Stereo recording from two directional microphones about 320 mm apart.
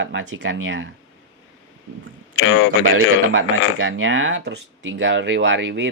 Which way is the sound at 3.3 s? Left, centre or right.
Right.